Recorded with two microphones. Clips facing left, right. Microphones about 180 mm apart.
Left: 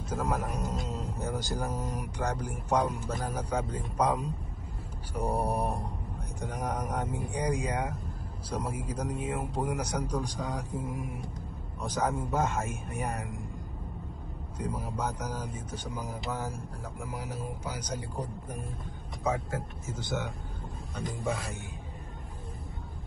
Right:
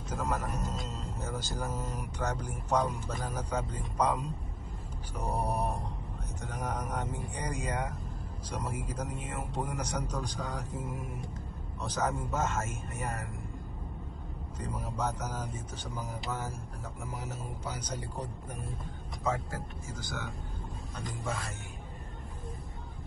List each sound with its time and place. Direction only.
0.1 s a man's voice: 10° left (ahead or behind)
14.6 s a man's voice: 10° left (ahead or behind)
19.9 s speech: 25° left (ahead or behind)
20.9 s speech: centre (ahead or behind)